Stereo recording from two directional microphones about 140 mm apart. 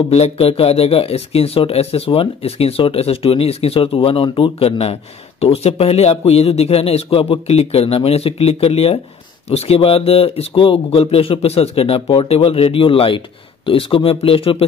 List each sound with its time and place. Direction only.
0.1 s speech: 45° left (ahead or behind)